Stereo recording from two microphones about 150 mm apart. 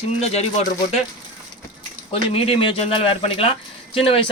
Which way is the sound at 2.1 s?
40° left (ahead or behind).